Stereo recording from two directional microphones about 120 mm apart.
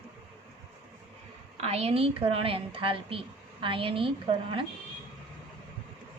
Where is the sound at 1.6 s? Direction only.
60° right (ahead or behind).